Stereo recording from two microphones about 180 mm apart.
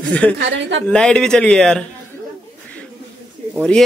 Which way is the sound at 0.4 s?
90° right.